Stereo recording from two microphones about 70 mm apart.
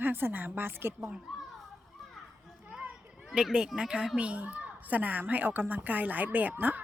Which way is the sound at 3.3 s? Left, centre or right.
Centre.